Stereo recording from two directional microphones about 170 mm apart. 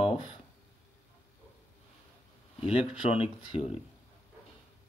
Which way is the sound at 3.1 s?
35° left (ahead or behind).